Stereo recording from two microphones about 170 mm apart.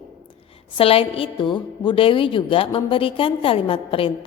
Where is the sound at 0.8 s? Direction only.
35° left (ahead or behind).